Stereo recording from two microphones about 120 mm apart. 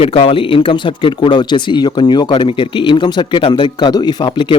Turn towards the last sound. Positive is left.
turn(degrees=40)  # may be behind; listen again after turning